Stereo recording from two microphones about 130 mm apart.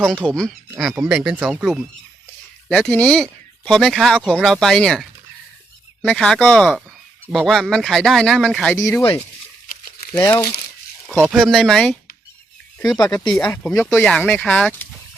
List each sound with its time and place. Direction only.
0.3 s speech: 5° left (ahead or behind)
2.6 s speech: 5° left (ahead or behind)
6.1 s speech: 5° left (ahead or behind)
8.7 s speech: 20° left (ahead or behind)
10.2 s speech: 25° left (ahead or behind)
11.2 s speech: 5° right (ahead or behind); by 14.8 s 10° left (ahead or behind)